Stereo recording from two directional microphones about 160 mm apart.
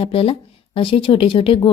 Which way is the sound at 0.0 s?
35° left (ahead or behind).